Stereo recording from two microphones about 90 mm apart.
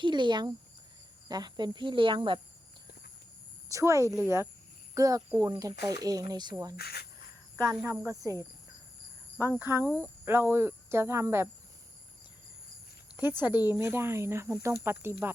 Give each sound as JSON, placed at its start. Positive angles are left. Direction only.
{"t": 0.0, "sound": "speech", "side_deg": -60}
{"t": 3.7, "sound": "speech", "side_deg": -35}
{"t": 7.9, "sound": "speech", "side_deg": -35}
{"t": 9.6, "sound": "speech", "side_deg": -25}
{"t": 13.7, "sound": "speech", "side_deg": -30}